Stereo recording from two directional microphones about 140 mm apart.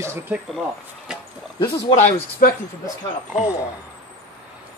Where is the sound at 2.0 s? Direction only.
50° left (ahead or behind).